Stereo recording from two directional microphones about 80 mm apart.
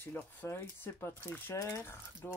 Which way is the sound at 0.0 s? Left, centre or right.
Left.